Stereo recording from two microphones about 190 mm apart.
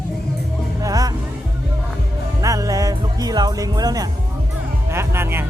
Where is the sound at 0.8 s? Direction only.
20° right (ahead or behind).